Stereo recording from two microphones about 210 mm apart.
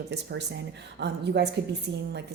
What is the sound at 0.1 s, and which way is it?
A woman's voice, 55° right (ahead or behind).